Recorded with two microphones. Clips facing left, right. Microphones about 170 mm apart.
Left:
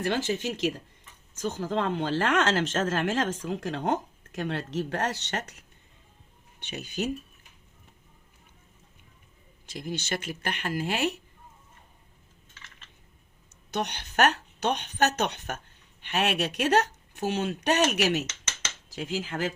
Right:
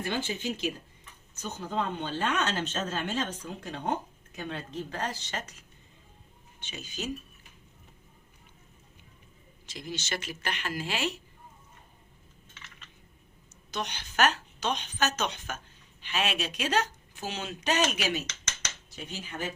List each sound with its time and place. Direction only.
0.0 s speech: 75° left (ahead or behind)
1.4 s speech: 90° left; by 7.1 s 60° left (ahead or behind)
9.6 s speech: 55° left (ahead or behind)
13.7 s speech: 60° left (ahead or behind)
18.9 s speech: 90° left